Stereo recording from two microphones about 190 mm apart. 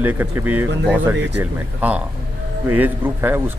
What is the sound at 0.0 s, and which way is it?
A man's voice, 10° right (ahead or behind).